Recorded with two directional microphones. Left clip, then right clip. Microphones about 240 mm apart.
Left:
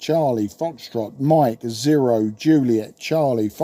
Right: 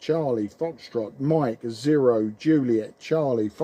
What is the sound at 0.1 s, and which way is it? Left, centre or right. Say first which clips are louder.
Speech: left 5 dB; left.